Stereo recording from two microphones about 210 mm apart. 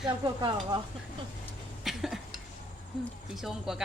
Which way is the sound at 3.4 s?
Centre (ahead or behind).